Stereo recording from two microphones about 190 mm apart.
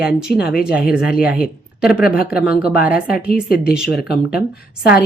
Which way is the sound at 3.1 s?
50° left (ahead or behind).